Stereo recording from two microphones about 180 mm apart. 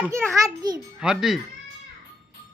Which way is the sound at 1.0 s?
Centre (ahead or behind).